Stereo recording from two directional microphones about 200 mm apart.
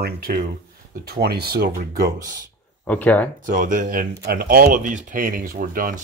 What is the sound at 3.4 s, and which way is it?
Speech, 40° right (ahead or behind).